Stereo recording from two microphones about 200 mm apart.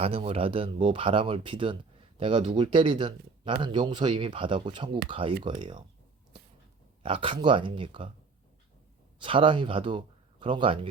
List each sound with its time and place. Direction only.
0.0 s speech: 30° right (ahead or behind)
7.0 s speech: 25° right (ahead or behind)
9.1 s speech: 25° right (ahead or behind)